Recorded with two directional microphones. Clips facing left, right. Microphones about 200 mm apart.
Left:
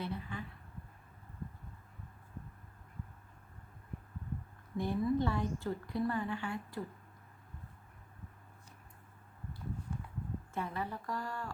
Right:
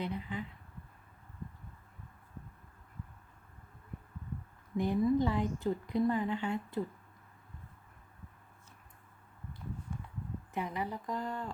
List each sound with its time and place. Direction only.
0.0 s a woman's voice: 20° right (ahead or behind)
4.8 s a woman's voice: 15° right (ahead or behind)
10.5 s a woman's voice: 15° right (ahead or behind)